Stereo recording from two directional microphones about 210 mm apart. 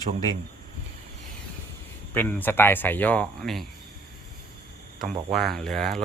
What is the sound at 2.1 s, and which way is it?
Speech, 10° left (ahead or behind).